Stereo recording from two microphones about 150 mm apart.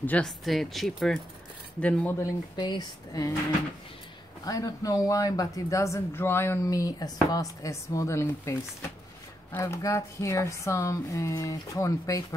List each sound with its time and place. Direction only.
0.0 s speech: 5° left (ahead or behind)
2.5 s speech: 30° left (ahead or behind)
4.5 s speech: 25° left (ahead or behind)